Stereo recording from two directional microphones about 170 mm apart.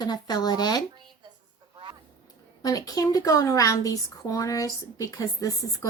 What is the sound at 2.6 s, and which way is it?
Speech, 20° left (ahead or behind).